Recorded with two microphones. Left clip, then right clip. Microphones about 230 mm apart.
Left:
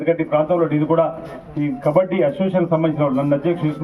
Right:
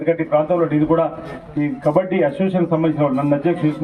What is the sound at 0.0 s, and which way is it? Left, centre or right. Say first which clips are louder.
A man's voice: right 1 dB; right.